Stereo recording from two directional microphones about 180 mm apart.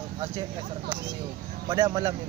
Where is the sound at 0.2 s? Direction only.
25° right (ahead or behind).